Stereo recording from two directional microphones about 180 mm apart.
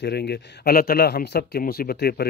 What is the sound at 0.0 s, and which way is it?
Speech, 70° left (ahead or behind).